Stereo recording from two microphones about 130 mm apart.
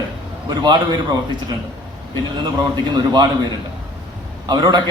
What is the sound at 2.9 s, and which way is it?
Speech, 35° right (ahead or behind).